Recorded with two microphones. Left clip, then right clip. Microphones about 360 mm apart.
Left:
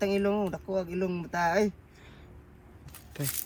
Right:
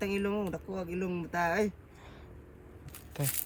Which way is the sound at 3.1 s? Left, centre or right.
Centre.